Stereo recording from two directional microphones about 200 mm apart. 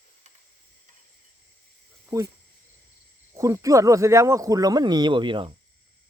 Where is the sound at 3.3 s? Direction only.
15° right (ahead or behind).